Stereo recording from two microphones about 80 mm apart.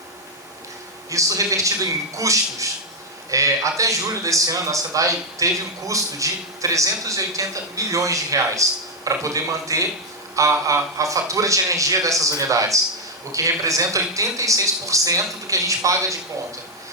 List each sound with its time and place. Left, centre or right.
1.1 s speech: right